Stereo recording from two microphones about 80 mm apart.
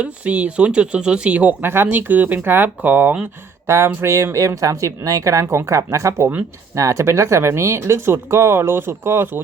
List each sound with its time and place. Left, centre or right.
0.0 s speech: centre
3.7 s speech: right